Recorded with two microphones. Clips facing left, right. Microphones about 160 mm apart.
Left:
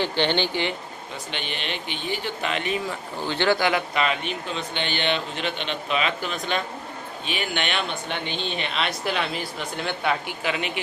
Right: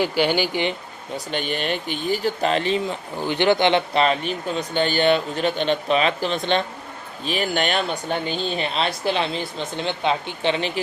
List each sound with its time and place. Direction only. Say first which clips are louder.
0.0 s speech: right 3 dB; 10° right (ahead or behind)
1.1 s speech: right 8 dB; 45° right (ahead or behind); by 3.0 s 30° right (ahead or behind)
3.2 s speech: right 4 dB; 15° right (ahead or behind)
7.3 s speech: right 6 dB; 40° right (ahead or behind)